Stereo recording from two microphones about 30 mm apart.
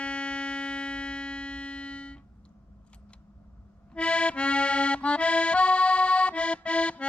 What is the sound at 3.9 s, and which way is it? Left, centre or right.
Accordion, left.